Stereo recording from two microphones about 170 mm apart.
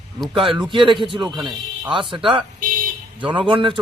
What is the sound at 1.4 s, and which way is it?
Speech, 25° right (ahead or behind).